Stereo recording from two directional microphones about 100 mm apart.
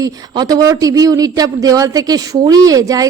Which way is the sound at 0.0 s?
40° right (ahead or behind).